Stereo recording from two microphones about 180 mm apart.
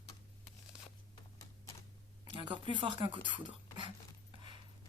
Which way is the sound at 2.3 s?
25° right (ahead or behind).